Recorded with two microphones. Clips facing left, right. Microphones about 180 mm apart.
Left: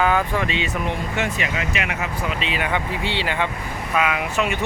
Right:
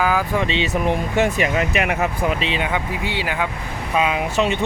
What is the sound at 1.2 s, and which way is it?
Speech, 45° right (ahead or behind).